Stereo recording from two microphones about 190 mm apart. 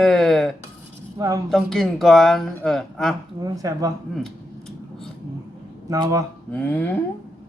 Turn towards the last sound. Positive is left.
turn(degrees=10)  # may be behind; listen again after turning